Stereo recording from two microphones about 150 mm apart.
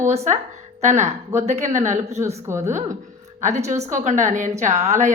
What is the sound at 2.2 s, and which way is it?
Speech, 20° right (ahead or behind).